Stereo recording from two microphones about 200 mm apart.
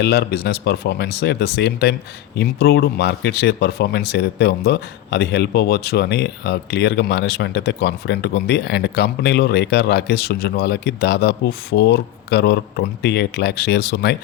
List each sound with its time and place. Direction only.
0.0 s speech: 55° left (ahead or behind)